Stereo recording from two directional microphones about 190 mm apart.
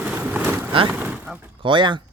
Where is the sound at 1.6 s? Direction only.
25° right (ahead or behind).